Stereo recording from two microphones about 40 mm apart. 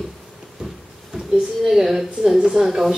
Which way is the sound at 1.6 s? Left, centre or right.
Centre.